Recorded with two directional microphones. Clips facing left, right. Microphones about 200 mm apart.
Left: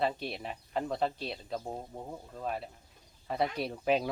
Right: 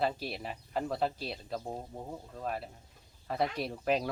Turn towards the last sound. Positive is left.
turn(degrees=0)  # may be behind; listen again after turning